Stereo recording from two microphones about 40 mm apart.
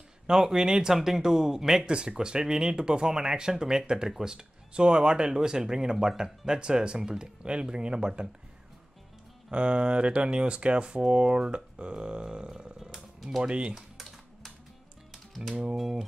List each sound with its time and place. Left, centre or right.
0.3 s speech: centre
1.9 s speech: right
9.5 s speech: right
12.7 s wild animals: centre
13.4 s speech: right
15.7 s speech: centre